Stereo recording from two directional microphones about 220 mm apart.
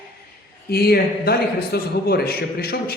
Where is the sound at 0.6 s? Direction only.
45° left (ahead or behind).